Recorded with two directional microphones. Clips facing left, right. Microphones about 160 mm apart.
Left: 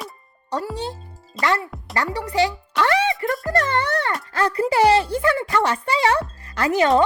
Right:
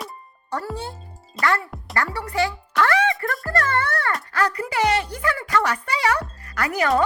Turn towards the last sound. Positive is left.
turn(degrees=25)  # may be behind; listen again after turning